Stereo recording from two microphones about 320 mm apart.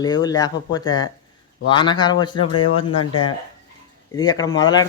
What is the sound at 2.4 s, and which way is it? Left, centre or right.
Speech, left.